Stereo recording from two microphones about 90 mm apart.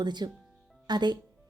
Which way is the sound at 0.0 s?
55° right (ahead or behind).